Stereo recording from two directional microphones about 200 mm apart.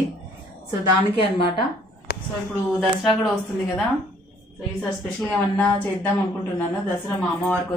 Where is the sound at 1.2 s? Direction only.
25° left (ahead or behind).